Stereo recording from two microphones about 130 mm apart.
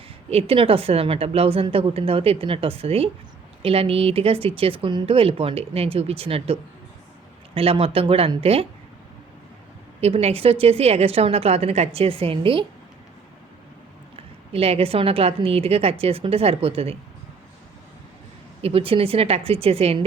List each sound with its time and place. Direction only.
0.3 s speech: 50° right (ahead or behind)
10.0 s speech: 50° right (ahead or behind)
14.2 s speech: 50° right (ahead or behind)
18.6 s speech: 45° right (ahead or behind)